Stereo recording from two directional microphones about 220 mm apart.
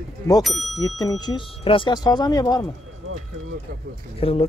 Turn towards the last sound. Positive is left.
turn(degrees=25)  # may be behind; listen again after turning